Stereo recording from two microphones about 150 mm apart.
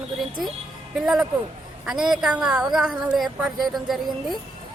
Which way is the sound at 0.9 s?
5° right (ahead or behind).